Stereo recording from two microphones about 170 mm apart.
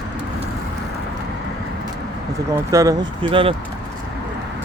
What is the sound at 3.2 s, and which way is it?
Speech, 30° right (ahead or behind).